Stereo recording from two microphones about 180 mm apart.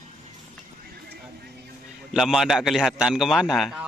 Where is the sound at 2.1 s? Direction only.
Centre (ahead or behind).